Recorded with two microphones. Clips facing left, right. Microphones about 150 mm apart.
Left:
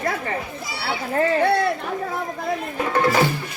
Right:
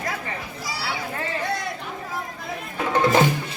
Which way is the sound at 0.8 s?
60° left (ahead or behind).